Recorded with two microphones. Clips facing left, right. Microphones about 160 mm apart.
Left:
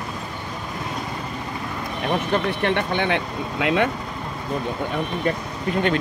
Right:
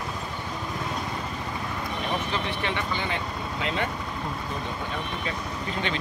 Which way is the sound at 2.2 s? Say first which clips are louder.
Left 8 dB; 55° left (ahead or behind).